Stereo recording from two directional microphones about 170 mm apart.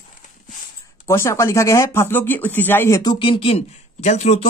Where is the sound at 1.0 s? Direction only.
15° left (ahead or behind).